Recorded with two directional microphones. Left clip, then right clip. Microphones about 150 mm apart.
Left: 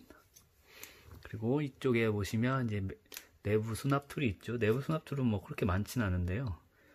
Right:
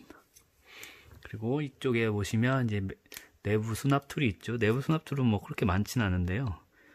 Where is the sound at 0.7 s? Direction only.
30° right (ahead or behind).